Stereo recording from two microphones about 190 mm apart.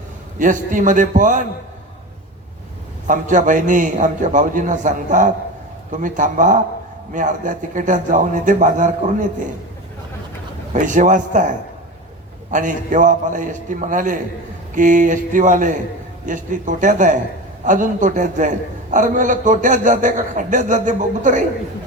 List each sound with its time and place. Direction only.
0.3 s a man's voice: 45° right (ahead or behind)
3.1 s a man's voice: 40° right (ahead or behind)
10.7 s a man's voice: 40° right (ahead or behind)